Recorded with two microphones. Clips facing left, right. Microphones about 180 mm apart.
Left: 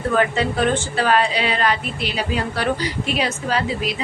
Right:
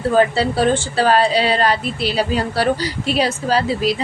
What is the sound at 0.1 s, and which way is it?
A woman's voice, 35° right (ahead or behind).